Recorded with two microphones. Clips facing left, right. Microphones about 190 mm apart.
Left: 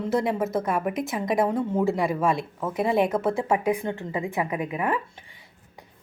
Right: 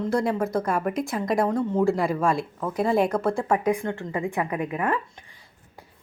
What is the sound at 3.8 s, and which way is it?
A woman's voice, 20° left (ahead or behind).